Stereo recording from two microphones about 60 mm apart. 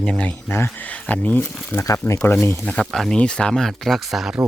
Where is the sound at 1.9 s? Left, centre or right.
Left.